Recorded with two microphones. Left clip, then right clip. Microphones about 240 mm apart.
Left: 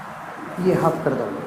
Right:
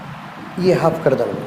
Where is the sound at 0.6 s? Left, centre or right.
Right.